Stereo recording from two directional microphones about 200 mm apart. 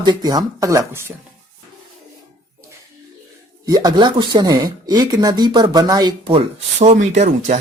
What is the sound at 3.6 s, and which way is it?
Speech, 20° right (ahead or behind).